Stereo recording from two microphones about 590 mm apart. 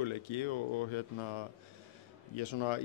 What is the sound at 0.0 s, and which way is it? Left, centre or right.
A man's voice, left.